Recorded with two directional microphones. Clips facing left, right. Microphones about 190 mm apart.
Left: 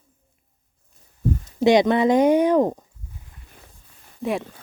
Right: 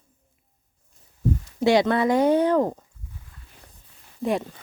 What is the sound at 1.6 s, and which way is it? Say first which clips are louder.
Speech: left 3 dB; 20° left (ahead or behind).